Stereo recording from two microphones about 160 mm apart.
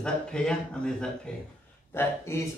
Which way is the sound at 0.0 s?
5° left (ahead or behind).